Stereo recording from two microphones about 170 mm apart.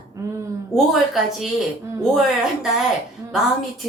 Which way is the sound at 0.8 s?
Centre (ahead or behind).